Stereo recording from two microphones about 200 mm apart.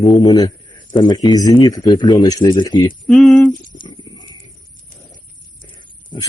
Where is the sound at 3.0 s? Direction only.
5° left (ahead or behind).